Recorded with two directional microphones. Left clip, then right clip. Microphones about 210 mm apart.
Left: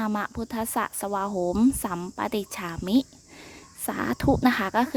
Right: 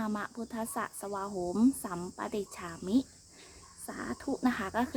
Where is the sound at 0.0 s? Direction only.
40° left (ahead or behind).